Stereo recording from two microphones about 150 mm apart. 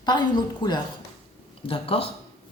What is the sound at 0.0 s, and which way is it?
Speech, 30° left (ahead or behind).